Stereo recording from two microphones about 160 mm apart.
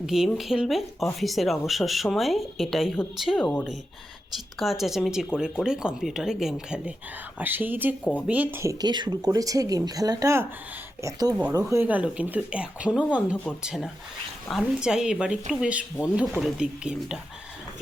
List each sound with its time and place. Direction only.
0.0 s speech: centre (ahead or behind); by 11.3 s 25° right (ahead or behind)
11.7 s speech: 10° right (ahead or behind)
13.3 s speech: 10° left (ahead or behind)
13.6 s speech: 5° right (ahead or behind)